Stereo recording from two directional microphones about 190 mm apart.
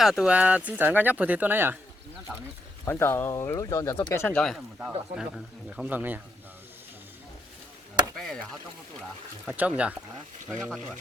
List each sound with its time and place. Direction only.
0.0 s speech: centre (ahead or behind)
2.8 s speech: 10° left (ahead or behind); by 6.1 s 10° right (ahead or behind)
8.1 s chop: centre (ahead or behind)
9.5 s speech: 5° right (ahead or behind)